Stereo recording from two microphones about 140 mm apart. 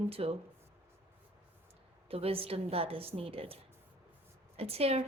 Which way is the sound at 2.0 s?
45° right (ahead or behind).